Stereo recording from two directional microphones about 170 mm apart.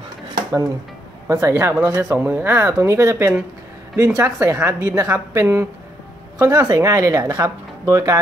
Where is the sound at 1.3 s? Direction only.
15° right (ahead or behind).